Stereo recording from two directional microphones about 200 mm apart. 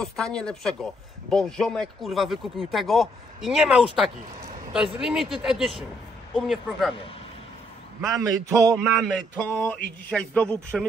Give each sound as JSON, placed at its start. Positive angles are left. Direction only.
{"t": 0.0, "sound": "speech", "side_deg": 5}
{"t": 8.2, "sound": "a man's voice", "side_deg": -15}
{"t": 8.7, "sound": "a man's voice", "side_deg": 0}